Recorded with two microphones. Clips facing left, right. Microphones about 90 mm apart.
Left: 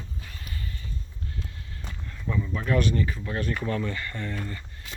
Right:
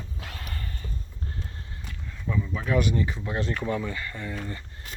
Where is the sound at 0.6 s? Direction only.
45° right (ahead or behind).